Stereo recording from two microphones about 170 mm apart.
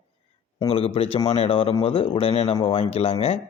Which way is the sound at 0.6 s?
35° left (ahead or behind).